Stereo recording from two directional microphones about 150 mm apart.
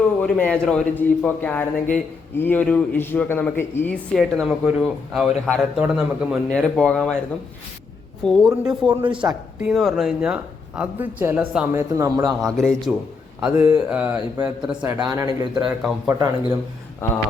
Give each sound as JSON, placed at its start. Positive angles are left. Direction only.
{"t": 0.2, "sound": "a man's voice", "side_deg": 10}
{"t": 4.1, "sound": "speech", "side_deg": 0}
{"t": 8.2, "sound": "speech", "side_deg": 0}
{"t": 9.0, "sound": "a woman's voice", "side_deg": -35}
{"t": 9.6, "sound": "a man's voice", "side_deg": 0}
{"t": 12.5, "sound": "speech", "side_deg": 5}
{"t": 15.1, "sound": "a man's voice", "side_deg": -25}